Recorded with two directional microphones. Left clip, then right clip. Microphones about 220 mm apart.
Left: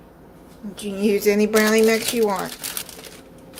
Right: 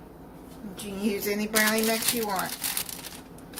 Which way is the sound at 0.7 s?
35° left (ahead or behind).